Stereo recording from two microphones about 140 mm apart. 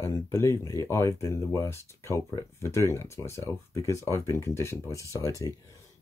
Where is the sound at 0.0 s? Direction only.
20° left (ahead or behind).